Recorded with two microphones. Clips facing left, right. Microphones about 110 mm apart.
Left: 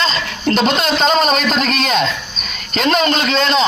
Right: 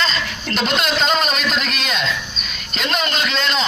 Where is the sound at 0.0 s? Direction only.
30° left (ahead or behind).